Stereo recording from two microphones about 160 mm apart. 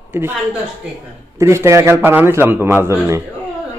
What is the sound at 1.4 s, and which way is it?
A man's voice, 20° right (ahead or behind).